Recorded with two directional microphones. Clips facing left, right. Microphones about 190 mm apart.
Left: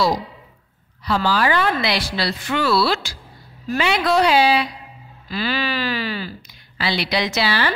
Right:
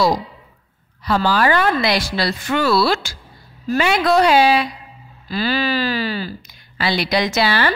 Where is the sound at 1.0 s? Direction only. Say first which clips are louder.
Right 2 dB; 50° right (ahead or behind).